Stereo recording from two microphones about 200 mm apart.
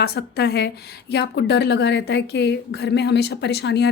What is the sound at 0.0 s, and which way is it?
A woman's voice, 55° left (ahead or behind).